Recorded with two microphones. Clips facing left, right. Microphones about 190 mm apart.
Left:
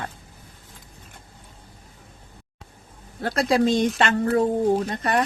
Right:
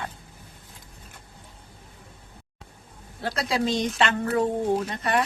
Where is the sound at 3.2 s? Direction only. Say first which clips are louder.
Left 6 dB; 50° left (ahead or behind).